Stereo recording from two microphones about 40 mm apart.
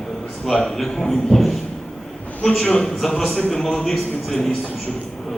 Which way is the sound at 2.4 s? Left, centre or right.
Centre.